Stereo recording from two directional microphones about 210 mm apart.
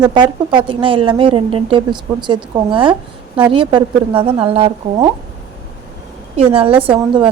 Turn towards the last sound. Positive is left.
turn(degrees=-25)  # may be behind; listen again after turning